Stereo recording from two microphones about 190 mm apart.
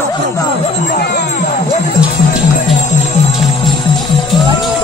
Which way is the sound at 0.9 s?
55° left (ahead or behind).